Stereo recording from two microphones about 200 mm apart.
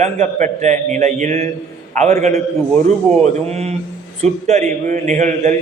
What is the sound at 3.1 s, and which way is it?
Speech, 5° left (ahead or behind).